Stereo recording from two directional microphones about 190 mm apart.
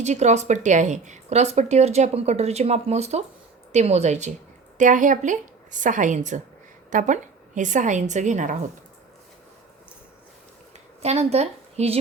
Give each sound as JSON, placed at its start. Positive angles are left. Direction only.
{"t": 0.0, "sound": "speech", "side_deg": -35}
{"t": 11.0, "sound": "speech", "side_deg": -35}